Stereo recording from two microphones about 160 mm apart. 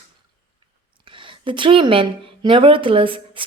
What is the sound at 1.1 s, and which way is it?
A woman's voice, 30° right (ahead or behind).